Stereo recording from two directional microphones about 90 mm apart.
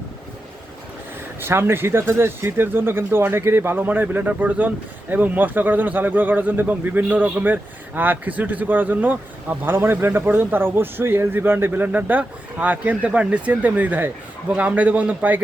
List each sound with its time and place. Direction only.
1.4 s a man's voice: 25° right (ahead or behind)